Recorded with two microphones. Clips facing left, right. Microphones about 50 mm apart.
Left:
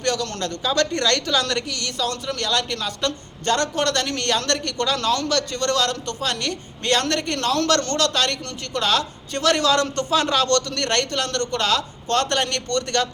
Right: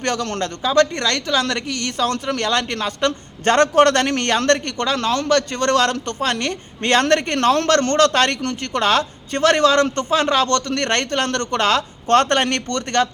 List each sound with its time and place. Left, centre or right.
0.0 s speech: right
0.6 s a woman's voice: centre
1.6 s speech: right